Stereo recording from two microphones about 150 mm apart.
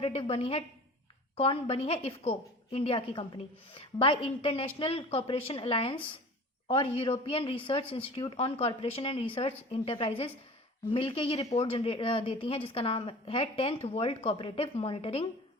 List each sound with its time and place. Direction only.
0.0 s a woman's voice: 40° left (ahead or behind)